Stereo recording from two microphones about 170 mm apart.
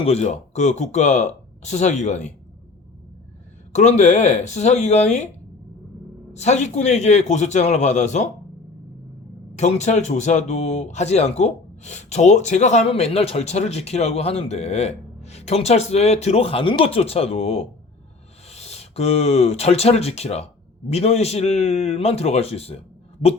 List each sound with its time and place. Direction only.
0.0 s speech: 40° left (ahead or behind)
3.8 s speech: 45° left (ahead or behind)
6.3 s speech: 40° left (ahead or behind)
9.6 s speech: 45° left (ahead or behind)